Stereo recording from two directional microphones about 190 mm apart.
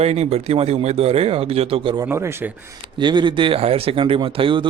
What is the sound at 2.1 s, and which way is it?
Speech, 15° right (ahead or behind).